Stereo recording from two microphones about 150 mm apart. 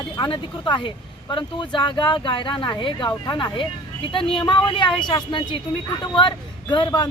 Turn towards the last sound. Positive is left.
turn(degrees=30)  # may be behind; listen again after turning